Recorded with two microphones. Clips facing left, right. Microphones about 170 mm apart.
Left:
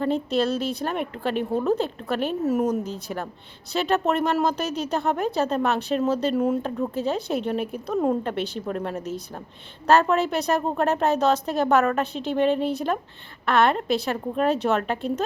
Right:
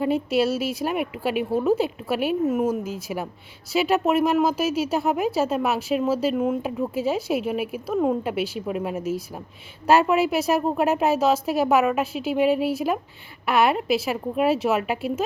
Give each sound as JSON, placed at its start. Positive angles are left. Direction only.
{"t": 0.0, "sound": "a woman's voice", "side_deg": -10}